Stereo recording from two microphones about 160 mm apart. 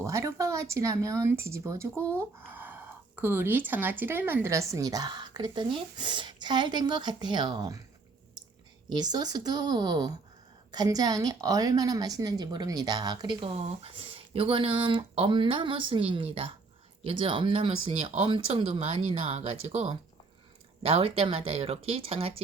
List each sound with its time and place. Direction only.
0.0 s speech: 20° right (ahead or behind)
8.9 s a woman's voice: 25° right (ahead or behind)